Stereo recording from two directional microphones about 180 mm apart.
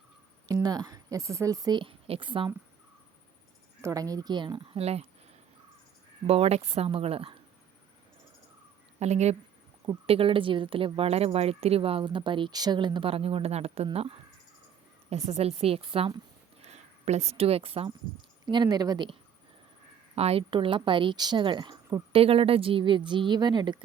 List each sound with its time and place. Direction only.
0.4 s speech: 20° right (ahead or behind)
3.8 s speech: 15° right (ahead or behind); by 5.0 s 35° right (ahead or behind)
6.2 s speech: 35° right (ahead or behind)
9.0 s speech: 40° right (ahead or behind); by 19.1 s 25° right (ahead or behind)
20.1 s speech: 35° right (ahead or behind)